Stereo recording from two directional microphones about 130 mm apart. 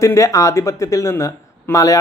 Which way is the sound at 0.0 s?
25° left (ahead or behind).